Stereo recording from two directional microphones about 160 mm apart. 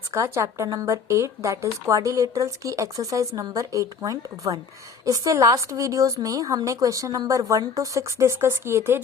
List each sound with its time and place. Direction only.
0.1 s speech: 20° right (ahead or behind)